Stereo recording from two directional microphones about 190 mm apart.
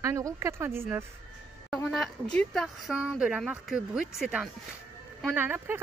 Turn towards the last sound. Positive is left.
turn(degrees=-10)  # may be behind; listen again after turning